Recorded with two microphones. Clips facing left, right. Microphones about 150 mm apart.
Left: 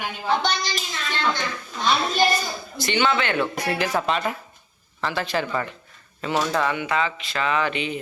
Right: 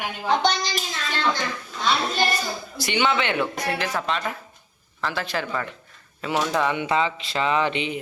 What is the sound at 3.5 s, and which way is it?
Speech, 10° left (ahead or behind).